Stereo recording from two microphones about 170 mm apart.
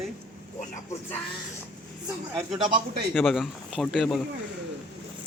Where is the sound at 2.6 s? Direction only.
55° right (ahead or behind).